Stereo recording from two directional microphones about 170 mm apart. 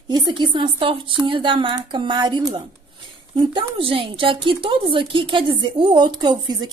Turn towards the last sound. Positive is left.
turn(degrees=-25)  # may be behind; listen again after turning